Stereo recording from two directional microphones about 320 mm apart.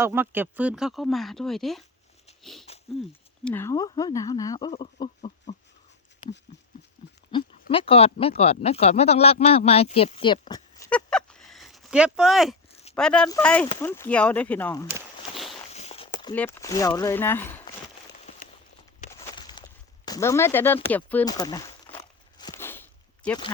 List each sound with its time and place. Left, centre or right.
0.0 s speech: centre
7.3 s speech: centre
14.9 s walk: centre
15.7 s speech: centre
19.1 s a sound: centre
20.1 s speech: centre
20.8 s a sound: centre